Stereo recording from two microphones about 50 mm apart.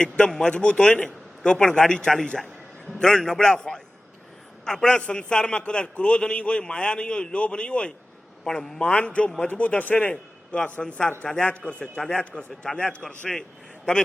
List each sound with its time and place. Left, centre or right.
0.4 s a man's voice: centre
8.4 s a man's voice: centre
8.8 s a man's voice: left
11.4 s a man's voice: left